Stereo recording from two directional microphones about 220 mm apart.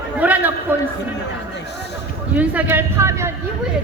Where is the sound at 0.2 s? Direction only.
5° right (ahead or behind).